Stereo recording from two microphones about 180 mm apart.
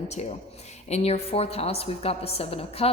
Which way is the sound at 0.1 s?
40° left (ahead or behind).